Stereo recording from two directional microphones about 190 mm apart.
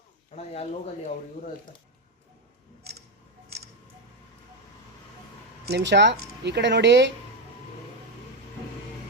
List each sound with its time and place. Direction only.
0.3 s speech: 35° left (ahead or behind)
5.6 s speech: 65° right (ahead or behind)